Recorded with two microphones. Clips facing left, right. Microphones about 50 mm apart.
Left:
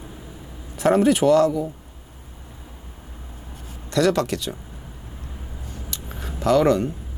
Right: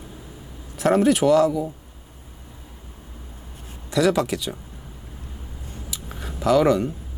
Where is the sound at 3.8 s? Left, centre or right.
Centre.